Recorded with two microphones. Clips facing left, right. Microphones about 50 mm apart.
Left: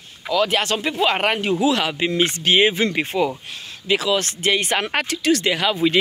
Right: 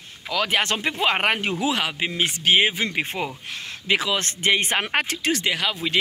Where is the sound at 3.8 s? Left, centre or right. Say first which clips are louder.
Left 3 dB; right.